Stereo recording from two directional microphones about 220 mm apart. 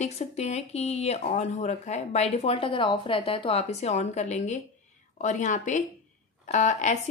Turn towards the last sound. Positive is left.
turn(degrees=35)  # may be behind; listen again after turning